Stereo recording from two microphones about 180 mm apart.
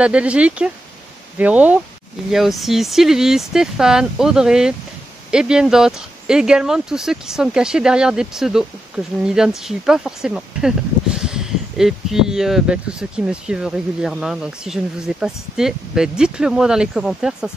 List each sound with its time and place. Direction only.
0.0 s speech: 5° right (ahead or behind)